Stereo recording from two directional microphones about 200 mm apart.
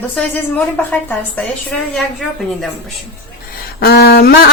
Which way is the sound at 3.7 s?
50° left (ahead or behind).